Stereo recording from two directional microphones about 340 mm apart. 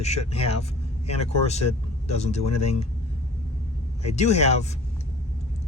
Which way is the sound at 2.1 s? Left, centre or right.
Centre.